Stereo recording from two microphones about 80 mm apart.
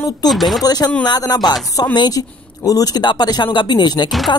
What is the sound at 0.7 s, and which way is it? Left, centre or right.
Speech, left.